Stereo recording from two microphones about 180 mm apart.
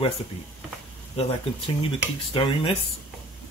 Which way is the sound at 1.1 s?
30° left (ahead or behind).